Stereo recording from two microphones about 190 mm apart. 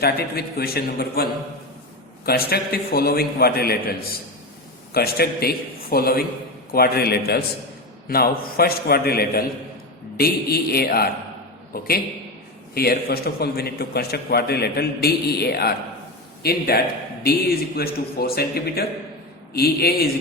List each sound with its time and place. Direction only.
0.0 s a man's voice: 55° left (ahead or behind)